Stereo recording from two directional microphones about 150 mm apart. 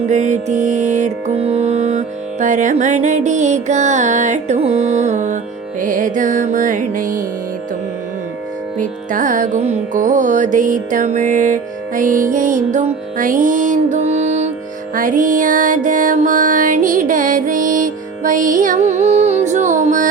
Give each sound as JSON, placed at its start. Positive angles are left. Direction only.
{"t": 0.1, "sound": "music", "side_deg": -50}
{"t": 8.8, "sound": "music", "side_deg": -60}
{"t": 14.9, "sound": "music", "side_deg": -65}